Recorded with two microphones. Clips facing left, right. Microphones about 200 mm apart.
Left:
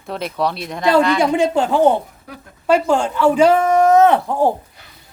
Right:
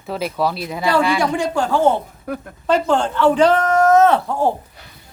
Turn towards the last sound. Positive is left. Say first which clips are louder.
# left 1 dB
turn(degrees=15)  # may be behind; listen again after turning